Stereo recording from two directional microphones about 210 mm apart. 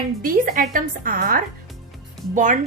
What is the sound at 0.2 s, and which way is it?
A woman's voice, 45° right (ahead or behind).